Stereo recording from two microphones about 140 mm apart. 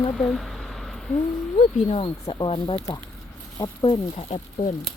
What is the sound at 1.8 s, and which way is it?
Speech, 40° left (ahead or behind).